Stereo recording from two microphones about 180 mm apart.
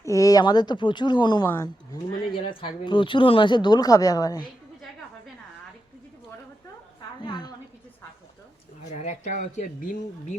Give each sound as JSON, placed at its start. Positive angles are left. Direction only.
{"t": 0.0, "sound": "speech", "side_deg": 20}
{"t": 7.2, "sound": "a sound", "side_deg": 25}
{"t": 8.9, "sound": "speech", "side_deg": 40}